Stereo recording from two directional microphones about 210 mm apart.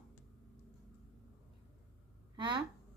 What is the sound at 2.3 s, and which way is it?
Speech, 20° right (ahead or behind).